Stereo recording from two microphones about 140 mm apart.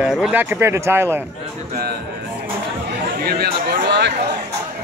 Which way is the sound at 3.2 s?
90° right.